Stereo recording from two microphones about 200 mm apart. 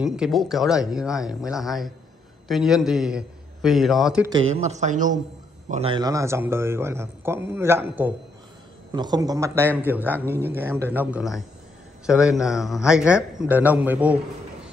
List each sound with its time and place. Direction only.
0.0 s a man's voice: 5° right (ahead or behind)
4.3 s speech: 30° right (ahead or behind); by 8.1 s 10° right (ahead or behind)
8.9 s a man's voice: 20° right (ahead or behind)